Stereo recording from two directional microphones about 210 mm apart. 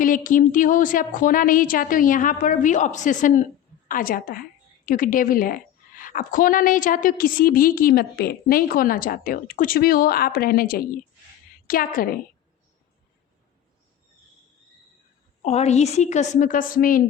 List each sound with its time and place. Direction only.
0.0 s a woman's voice: 40° left (ahead or behind)
15.4 s a woman's voice: 30° left (ahead or behind)